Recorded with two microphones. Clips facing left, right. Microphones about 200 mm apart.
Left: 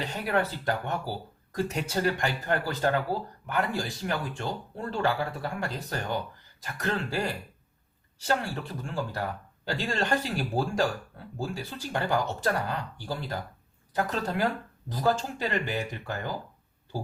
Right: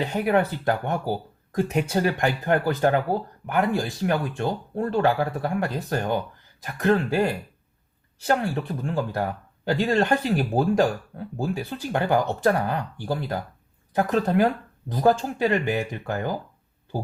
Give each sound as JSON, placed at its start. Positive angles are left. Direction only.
{"t": 0.0, "sound": "speech", "side_deg": -55}